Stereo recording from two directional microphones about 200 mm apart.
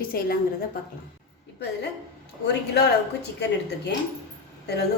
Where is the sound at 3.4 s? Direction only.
60° left (ahead or behind).